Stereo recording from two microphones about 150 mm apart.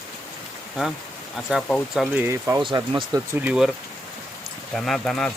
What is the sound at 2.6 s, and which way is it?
Speech, 30° right (ahead or behind).